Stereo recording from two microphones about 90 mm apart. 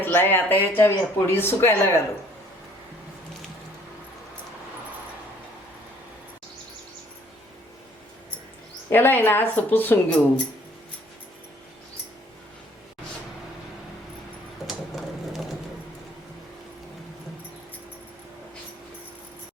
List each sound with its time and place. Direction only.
0.0 s speech: 25° left (ahead or behind)
8.9 s speech: 25° left (ahead or behind)
14.7 s a sound: centre (ahead or behind)